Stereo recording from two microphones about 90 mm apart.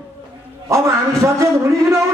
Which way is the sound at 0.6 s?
35° right (ahead or behind).